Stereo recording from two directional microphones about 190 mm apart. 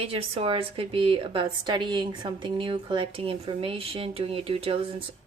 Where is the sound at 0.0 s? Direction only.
30° right (ahead or behind).